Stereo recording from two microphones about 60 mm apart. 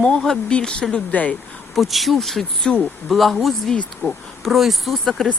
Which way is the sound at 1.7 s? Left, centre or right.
Centre.